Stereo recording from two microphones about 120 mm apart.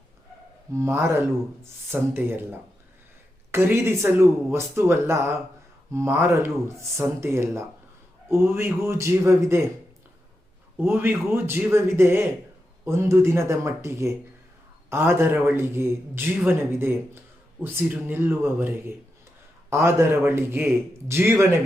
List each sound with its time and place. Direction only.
0.7 s a man's voice: 25° right (ahead or behind)
10.8 s a man's voice: 15° right (ahead or behind)